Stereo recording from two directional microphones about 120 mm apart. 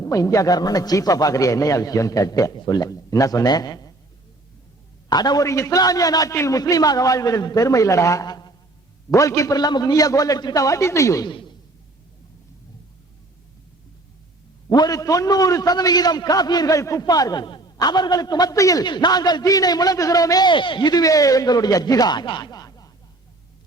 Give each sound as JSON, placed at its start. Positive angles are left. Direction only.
{"t": 0.0, "sound": "a man's voice", "side_deg": 30}
{"t": 5.0, "sound": "a man's voice", "side_deg": 35}
{"t": 11.3, "sound": "speech", "side_deg": 45}
{"t": 14.7, "sound": "a man's voice", "side_deg": 30}